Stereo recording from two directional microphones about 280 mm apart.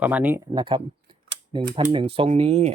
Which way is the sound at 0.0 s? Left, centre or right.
Centre.